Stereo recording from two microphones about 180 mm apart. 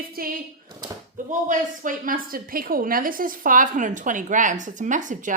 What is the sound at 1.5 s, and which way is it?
A woman's voice, 50° right (ahead or behind).